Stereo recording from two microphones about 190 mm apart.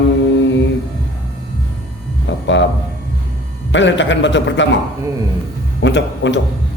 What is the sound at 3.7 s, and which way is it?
Speech, 75° left (ahead or behind).